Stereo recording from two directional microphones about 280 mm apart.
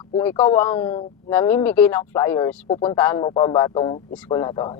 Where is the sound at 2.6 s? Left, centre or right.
Centre.